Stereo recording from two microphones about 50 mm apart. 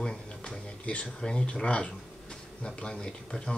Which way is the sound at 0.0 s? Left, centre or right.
Centre.